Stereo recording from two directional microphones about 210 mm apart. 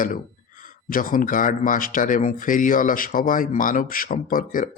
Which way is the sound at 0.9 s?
40° left (ahead or behind).